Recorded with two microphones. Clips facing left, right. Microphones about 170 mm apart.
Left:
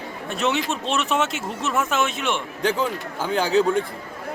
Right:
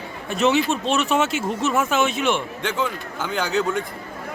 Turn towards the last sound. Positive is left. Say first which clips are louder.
# left 3 dB
turn(degrees=30)  # may be behind; listen again after turning